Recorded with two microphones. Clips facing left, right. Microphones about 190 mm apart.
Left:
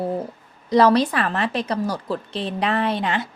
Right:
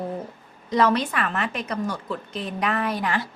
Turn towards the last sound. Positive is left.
turn(degrees=25)  # may be behind; listen again after turning